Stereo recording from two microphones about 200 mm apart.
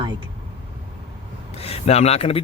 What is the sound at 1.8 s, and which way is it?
Speech, 30° left (ahead or behind).